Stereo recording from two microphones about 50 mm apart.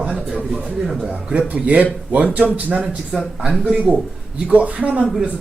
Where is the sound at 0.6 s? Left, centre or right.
Centre.